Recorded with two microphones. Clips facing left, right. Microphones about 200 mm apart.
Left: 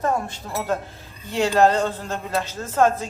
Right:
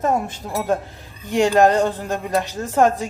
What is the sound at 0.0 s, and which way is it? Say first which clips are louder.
Speech: right 3 dB; 20° right (ahead or behind).